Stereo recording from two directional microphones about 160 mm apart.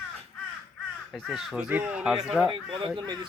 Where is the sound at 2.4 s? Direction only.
30° right (ahead or behind).